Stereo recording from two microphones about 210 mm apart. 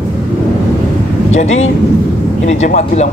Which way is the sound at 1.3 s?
30° left (ahead or behind).